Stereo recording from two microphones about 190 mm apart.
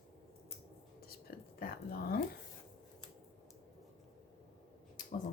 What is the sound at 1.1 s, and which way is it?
Whispering, 50° left (ahead or behind).